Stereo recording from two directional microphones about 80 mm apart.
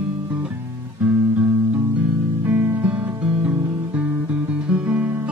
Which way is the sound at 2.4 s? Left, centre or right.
Right.